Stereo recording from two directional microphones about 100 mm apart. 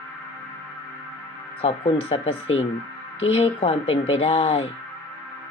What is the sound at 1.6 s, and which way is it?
Speech, 90° left.